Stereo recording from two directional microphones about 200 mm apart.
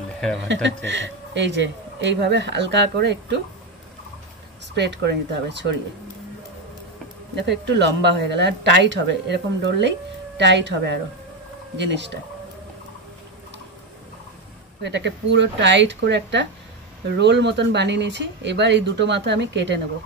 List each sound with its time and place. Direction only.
0.5 s speech: 65° right (ahead or behind)
4.7 s speech: 60° right (ahead or behind)
7.3 s speech: 60° right (ahead or behind)
14.8 s speech: 60° right (ahead or behind)